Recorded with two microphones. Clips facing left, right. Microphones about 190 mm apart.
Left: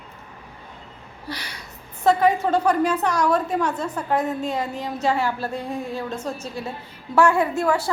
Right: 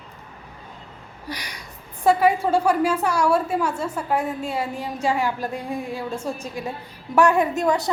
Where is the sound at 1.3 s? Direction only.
15° right (ahead or behind).